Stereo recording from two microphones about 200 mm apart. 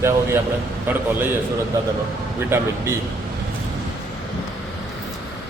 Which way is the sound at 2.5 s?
10° right (ahead or behind).